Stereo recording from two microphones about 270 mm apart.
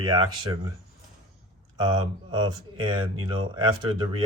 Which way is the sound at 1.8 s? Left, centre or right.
Centre.